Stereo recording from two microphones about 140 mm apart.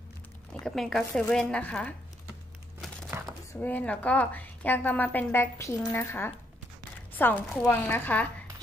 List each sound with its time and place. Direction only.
0.7 s speech: centre (ahead or behind)
3.5 s a woman's voice: 15° left (ahead or behind)